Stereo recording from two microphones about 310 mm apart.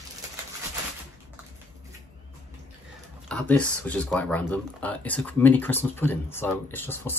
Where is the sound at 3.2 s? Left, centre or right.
Centre.